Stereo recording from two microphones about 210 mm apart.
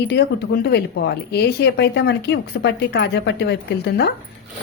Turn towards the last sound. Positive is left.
turn(degrees=50)  # may be behind; listen again after turning